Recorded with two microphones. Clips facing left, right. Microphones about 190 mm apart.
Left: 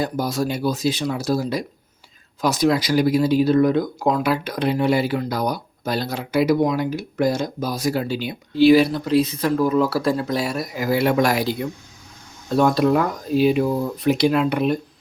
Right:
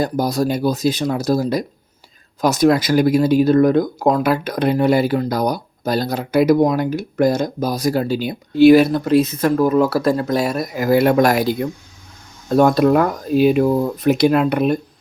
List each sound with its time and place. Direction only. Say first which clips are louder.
0.0 s speech: right 4 dB; 40° right (ahead or behind)